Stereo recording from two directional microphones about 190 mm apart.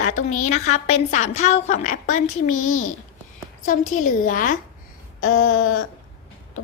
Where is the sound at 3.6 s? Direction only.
45° left (ahead or behind).